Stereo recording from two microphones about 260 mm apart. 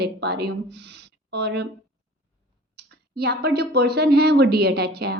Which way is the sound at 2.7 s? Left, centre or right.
Right.